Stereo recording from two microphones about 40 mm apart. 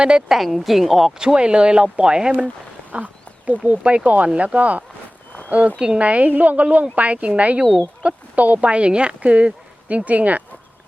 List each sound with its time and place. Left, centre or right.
0.3 s a woman's voice: centre
1.2 s speech: right
2.9 s a sound: right
3.6 s speech: right
8.6 s speech: right